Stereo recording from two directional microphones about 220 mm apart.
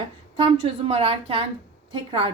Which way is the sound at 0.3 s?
25° right (ahead or behind).